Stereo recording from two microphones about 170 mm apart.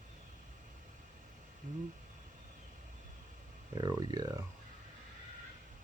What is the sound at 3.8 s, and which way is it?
Speech, 25° right (ahead or behind).